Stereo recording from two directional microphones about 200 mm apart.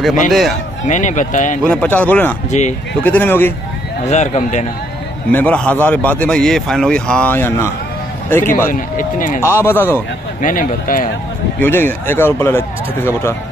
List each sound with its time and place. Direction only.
0.3 s a man's voice: centre (ahead or behind)
0.8 s speech: 35° left (ahead or behind)
1.6 s a man's voice: 5° left (ahead or behind)
2.5 s speech: 35° left (ahead or behind)
3.0 s a man's voice: 10° left (ahead or behind)
4.0 s speech: 35° left (ahead or behind)
5.3 s a man's voice: 5° left (ahead or behind)
8.6 s speech: 45° left (ahead or behind)
9.4 s a man's voice: 10° left (ahead or behind)
10.4 s speech: 45° left (ahead or behind)
11.6 s a man's voice: 10° left (ahead or behind)